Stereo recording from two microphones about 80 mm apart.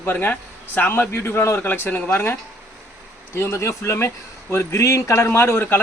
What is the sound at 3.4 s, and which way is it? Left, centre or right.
A man's voice, left.